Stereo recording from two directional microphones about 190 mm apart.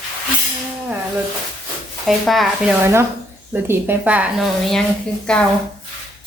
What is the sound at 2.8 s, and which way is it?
Speech, 15° right (ahead or behind).